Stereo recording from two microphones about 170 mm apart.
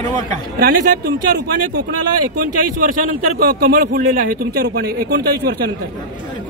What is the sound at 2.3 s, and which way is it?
Speech, 55° right (ahead or behind).